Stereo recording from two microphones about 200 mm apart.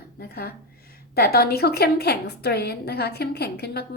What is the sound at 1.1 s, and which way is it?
A woman's voice, 50° left (ahead or behind).